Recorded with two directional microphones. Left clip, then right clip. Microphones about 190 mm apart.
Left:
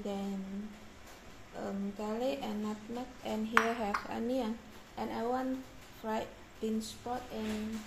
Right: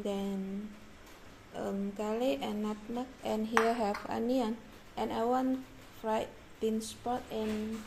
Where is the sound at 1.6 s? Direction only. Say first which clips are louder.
Right 3 dB; 35° right (ahead or behind).